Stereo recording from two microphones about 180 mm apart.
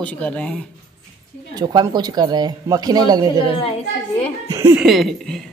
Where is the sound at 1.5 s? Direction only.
20° right (ahead or behind).